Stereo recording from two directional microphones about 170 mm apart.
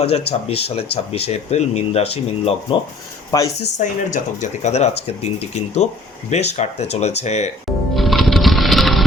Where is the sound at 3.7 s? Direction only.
45° left (ahead or behind).